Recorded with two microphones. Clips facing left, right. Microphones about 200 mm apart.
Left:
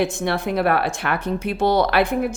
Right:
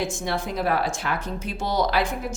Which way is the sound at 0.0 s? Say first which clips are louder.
Left 5 dB; 65° left (ahead or behind).